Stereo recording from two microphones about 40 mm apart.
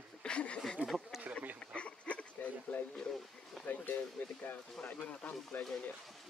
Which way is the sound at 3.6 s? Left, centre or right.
Left.